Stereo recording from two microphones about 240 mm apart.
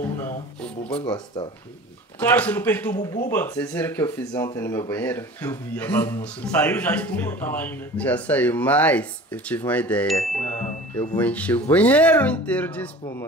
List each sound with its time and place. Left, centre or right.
1.0 s speech: centre
2.1 s speech: centre